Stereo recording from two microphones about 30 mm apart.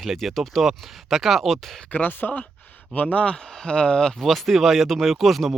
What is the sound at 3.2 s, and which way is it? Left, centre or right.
Speech, left.